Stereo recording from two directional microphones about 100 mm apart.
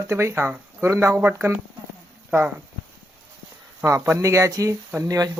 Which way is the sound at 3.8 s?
25° right (ahead or behind).